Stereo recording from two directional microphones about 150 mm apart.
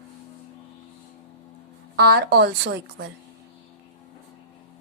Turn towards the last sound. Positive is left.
turn(degrees=-90)